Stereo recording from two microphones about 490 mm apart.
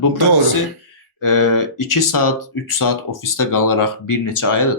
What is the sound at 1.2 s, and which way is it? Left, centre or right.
Speech, left.